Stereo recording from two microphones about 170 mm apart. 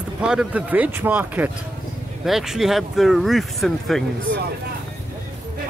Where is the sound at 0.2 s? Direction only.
5° right (ahead or behind).